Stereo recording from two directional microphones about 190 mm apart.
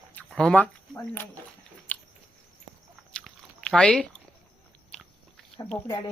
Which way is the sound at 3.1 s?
5° left (ahead or behind).